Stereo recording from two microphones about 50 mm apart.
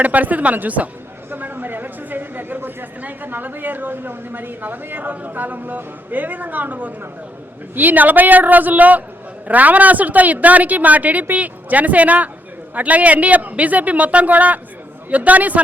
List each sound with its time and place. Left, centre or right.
0.0 s a woman's voice: right